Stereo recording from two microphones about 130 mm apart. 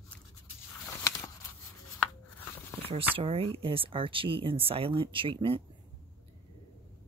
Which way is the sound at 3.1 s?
45° right (ahead or behind).